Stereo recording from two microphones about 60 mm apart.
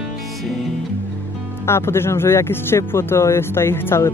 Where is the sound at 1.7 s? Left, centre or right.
Left.